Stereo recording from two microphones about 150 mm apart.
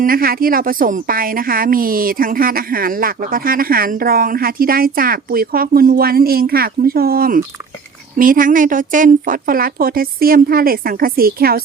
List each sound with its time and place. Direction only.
0.0 s a woman's voice: 75° right (ahead or behind)